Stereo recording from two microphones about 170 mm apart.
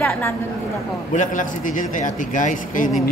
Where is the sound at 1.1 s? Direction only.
50° left (ahead or behind).